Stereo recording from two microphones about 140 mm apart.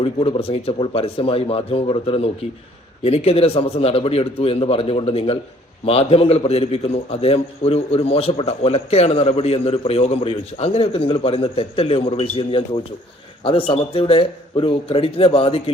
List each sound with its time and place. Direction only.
0.0 s a man's voice: 45° left (ahead or behind)